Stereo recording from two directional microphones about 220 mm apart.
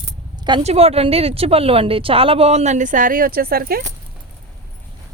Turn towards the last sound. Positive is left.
turn(degrees=-40)  # may be behind; listen again after turning